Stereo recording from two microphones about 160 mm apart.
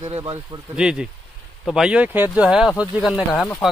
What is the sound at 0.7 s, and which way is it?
Speech, 5° right (ahead or behind).